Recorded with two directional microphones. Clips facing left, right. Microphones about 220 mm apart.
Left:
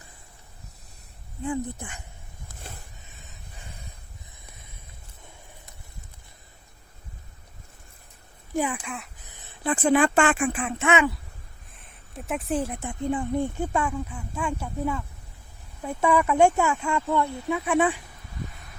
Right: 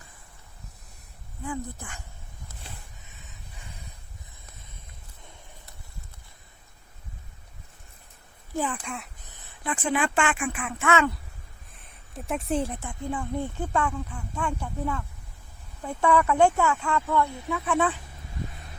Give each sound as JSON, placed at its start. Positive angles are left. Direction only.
{"t": 1.5, "sound": "speech", "side_deg": 20}
{"t": 8.5, "sound": "speech", "side_deg": 10}
{"t": 9.6, "sound": "speech", "side_deg": 40}
{"t": 11.7, "sound": "a sound", "side_deg": 0}
{"t": 12.8, "sound": "speech", "side_deg": 20}